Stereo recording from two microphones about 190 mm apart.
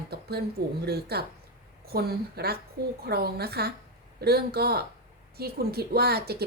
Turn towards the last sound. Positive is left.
turn(degrees=-55)  # may be behind; listen again after turning